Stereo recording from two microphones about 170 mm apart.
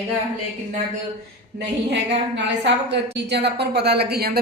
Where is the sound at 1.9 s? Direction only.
90° right.